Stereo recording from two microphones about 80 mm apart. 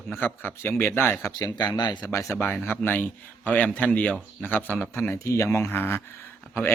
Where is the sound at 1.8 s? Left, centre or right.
Left.